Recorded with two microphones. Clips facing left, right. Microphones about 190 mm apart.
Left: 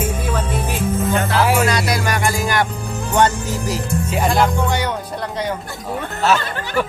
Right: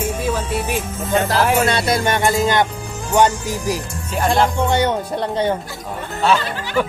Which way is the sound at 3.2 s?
10° right (ahead or behind).